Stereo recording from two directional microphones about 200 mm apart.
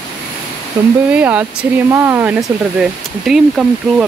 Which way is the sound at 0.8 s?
15° right (ahead or behind).